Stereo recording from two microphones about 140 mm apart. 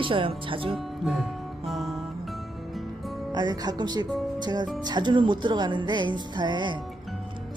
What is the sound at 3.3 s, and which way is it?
Speech, 30° right (ahead or behind).